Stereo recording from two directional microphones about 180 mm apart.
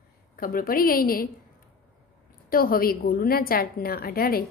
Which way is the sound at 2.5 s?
55° left (ahead or behind).